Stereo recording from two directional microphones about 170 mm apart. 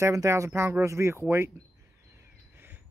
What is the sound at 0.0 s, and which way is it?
Speech, 15° right (ahead or behind).